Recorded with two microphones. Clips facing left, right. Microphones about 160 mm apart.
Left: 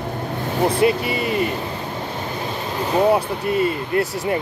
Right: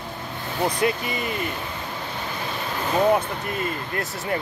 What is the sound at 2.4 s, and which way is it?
Vehicle, 30° left (ahead or behind).